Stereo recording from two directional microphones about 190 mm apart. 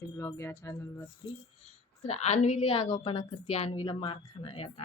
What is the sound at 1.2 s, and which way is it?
A woman's voice, 25° left (ahead or behind).